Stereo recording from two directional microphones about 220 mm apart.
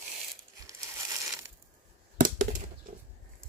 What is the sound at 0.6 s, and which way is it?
Crumpling, 15° right (ahead or behind).